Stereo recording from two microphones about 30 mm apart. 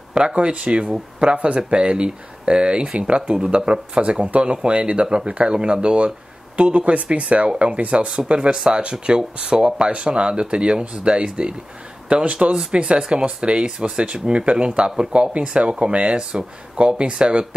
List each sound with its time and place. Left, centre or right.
0.2 s speech: right
4.3 s speech: right
8.5 s speech: right
9.0 s speech: right
13.7 s speech: right